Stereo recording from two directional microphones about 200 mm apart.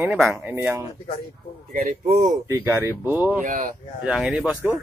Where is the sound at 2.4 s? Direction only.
15° right (ahead or behind).